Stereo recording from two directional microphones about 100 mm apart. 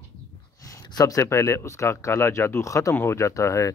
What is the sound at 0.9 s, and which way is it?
Speech, 35° left (ahead or behind).